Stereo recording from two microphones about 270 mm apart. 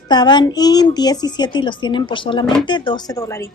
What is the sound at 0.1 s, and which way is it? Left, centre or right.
A woman's voice, centre.